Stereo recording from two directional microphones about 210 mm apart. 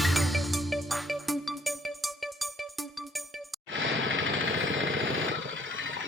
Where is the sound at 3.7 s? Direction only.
60° right (ahead or behind).